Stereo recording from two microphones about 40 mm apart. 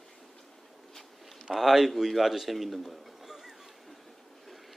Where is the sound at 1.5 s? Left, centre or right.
Centre.